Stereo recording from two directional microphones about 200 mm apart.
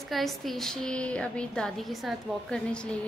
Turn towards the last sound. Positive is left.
turn(degrees=5)  # may be behind; listen again after turning